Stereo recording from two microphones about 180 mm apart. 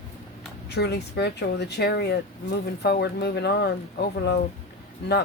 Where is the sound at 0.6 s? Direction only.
65° left (ahead or behind).